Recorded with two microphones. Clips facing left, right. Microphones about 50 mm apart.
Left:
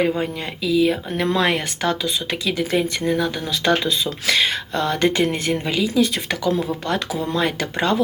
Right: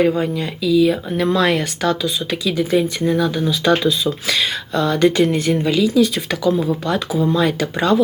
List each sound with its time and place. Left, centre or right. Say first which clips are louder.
0.0 s speech: right 4 dB; left
1.4 s speech: right 3 dB; left
2.4 s speech: right 4 dB; left